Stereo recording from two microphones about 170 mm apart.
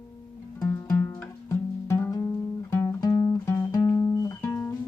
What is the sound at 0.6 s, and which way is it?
Music, 15° left (ahead or behind).